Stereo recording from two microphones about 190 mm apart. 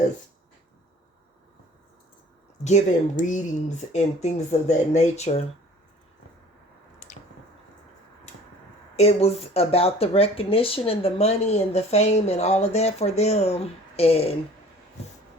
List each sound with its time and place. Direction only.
2.6 s speech: 40° left (ahead or behind)
9.0 s speech: 35° left (ahead or behind)